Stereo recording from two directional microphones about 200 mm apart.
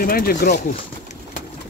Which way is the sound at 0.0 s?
45° left (ahead or behind).